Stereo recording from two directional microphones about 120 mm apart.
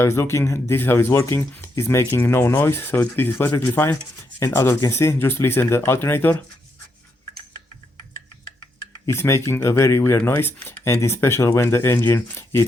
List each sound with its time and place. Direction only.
0.0 s speech: 25° left (ahead or behind)
9.0 s speech: 20° left (ahead or behind)